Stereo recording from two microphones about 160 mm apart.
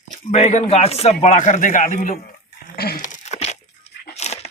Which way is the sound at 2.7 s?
75° left (ahead or behind).